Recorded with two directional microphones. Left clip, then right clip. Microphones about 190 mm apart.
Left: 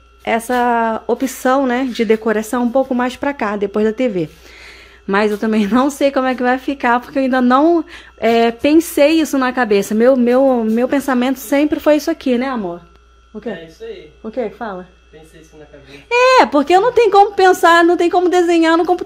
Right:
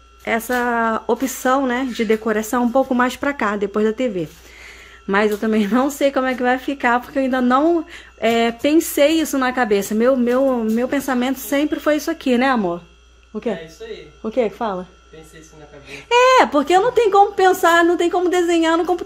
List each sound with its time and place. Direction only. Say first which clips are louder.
0.2 s speech: left 4 dB; 10° left (ahead or behind)
12.4 s speech: right 3 dB; 15° right (ahead or behind)
14.2 s speech: right 2 dB; 15° right (ahead or behind)
16.1 s speech: left 2 dB; 5° left (ahead or behind)